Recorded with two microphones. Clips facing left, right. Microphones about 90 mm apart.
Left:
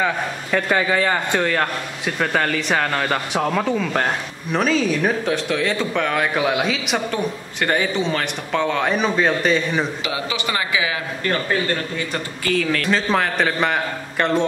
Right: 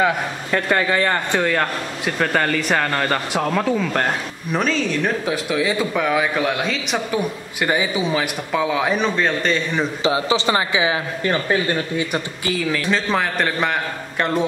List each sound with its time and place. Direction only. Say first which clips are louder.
0.0 s a man's voice: right 2 dB; centre (ahead or behind)
10.0 s a man's voice: right 6 dB; 30° right (ahead or behind)
12.5 s a man's voice: left 1 dB; 5° right (ahead or behind)